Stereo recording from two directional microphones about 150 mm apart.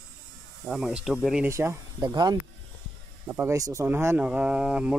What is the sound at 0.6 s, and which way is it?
Speech, 5° right (ahead or behind).